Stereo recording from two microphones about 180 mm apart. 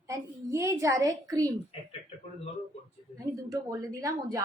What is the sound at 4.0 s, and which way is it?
Speech, 20° right (ahead or behind).